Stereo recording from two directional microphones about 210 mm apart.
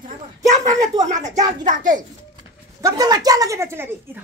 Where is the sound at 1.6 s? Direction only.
40° right (ahead or behind).